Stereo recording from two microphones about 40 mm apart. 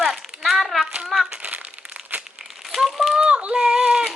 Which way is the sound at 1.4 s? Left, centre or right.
Right.